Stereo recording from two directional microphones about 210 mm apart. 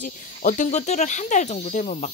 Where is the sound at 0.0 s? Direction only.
35° left (ahead or behind).